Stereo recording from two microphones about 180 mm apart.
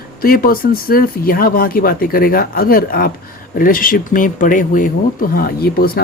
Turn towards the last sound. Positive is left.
turn(degrees=55)  # may be behind; listen again after turning